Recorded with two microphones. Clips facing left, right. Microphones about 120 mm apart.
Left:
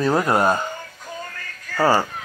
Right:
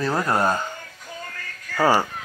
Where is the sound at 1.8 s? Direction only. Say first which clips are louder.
Left 1 dB; 15° right (ahead or behind).